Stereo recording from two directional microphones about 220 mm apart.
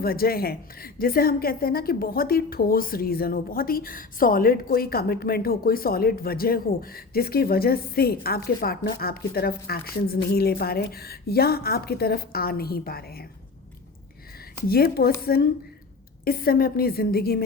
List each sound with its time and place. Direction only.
0.0 s a woman's voice: 45° left (ahead or behind)
14.7 s a woman's voice: 45° left (ahead or behind)
16.2 s a woman's voice: 40° left (ahead or behind)